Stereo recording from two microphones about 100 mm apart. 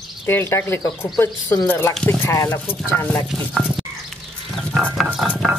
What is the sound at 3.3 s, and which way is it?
Stir, centre (ahead or behind).